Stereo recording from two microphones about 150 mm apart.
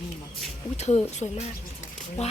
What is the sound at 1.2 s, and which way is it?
A woman's voice, 40° left (ahead or behind).